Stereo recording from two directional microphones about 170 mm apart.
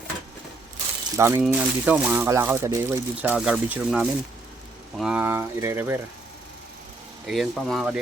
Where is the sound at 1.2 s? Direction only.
15° right (ahead or behind).